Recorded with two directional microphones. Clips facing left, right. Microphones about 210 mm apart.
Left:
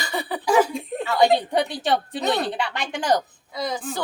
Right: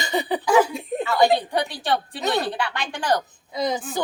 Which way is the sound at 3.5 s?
20° right (ahead or behind).